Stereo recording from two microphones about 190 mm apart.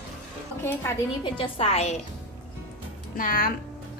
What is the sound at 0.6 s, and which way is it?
Speech, 10° left (ahead or behind).